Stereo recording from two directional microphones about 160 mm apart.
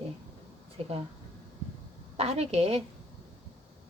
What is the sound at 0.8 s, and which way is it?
Speech, 40° right (ahead or behind).